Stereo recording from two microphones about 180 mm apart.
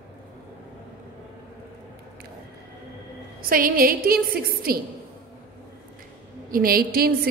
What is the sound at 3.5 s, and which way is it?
A woman's voice, 55° right (ahead or behind).